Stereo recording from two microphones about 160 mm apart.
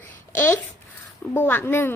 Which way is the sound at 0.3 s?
10° left (ahead or behind).